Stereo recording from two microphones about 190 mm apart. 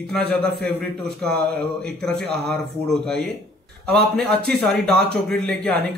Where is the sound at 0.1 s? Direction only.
5° left (ahead or behind).